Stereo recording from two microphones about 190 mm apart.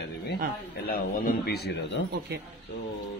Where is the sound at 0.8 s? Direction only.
50° left (ahead or behind).